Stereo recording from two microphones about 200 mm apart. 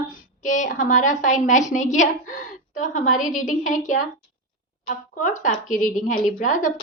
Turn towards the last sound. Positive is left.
turn(degrees=40)  # may be behind; listen again after turning